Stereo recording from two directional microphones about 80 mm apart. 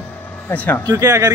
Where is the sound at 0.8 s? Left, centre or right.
Right.